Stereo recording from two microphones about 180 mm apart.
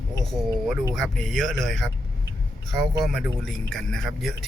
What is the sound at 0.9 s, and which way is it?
A man's voice, centre (ahead or behind).